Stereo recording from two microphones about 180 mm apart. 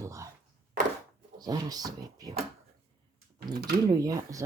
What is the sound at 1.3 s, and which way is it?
Speech, 20° right (ahead or behind).